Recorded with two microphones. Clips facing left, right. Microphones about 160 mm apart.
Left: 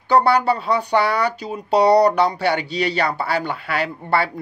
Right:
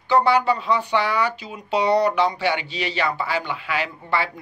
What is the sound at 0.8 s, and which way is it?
Speech, 40° left (ahead or behind).